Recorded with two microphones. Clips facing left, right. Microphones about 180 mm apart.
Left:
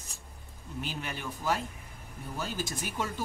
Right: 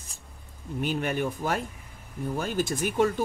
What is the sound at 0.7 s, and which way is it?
Speech, 55° right (ahead or behind).